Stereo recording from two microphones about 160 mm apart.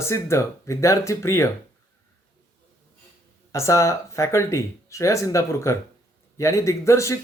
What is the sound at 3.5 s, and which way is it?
Speech, 20° left (ahead or behind).